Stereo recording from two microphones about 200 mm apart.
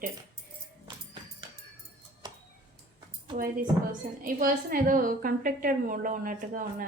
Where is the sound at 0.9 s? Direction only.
25° right (ahead or behind).